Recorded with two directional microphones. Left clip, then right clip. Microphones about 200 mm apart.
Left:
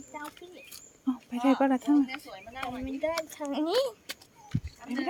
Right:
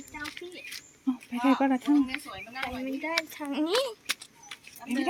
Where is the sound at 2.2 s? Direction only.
50° right (ahead or behind).